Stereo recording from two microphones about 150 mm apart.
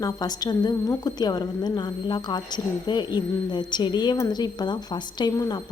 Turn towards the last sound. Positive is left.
turn(degrees=25)  # may be behind; listen again after turning